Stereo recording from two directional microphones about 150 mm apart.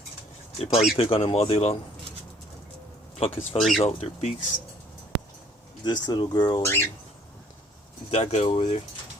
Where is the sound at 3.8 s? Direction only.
45° left (ahead or behind).